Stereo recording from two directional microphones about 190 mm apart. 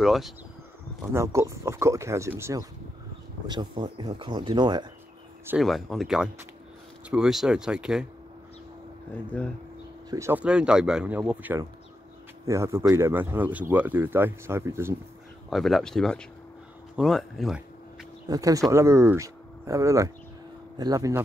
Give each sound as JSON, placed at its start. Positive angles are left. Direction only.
{"t": 0.0, "sound": "speech", "side_deg": 0}
{"t": 1.1, "sound": "speech", "side_deg": -15}
{"t": 5.5, "sound": "speech", "side_deg": 0}
{"t": 9.1, "sound": "speech", "side_deg": 5}
{"t": 10.0, "sound": "speech", "side_deg": -15}
{"t": 15.5, "sound": "speech", "side_deg": 0}
{"t": 18.2, "sound": "speech", "side_deg": -20}